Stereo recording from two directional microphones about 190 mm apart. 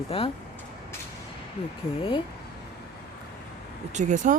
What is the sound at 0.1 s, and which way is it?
Speech, 30° left (ahead or behind).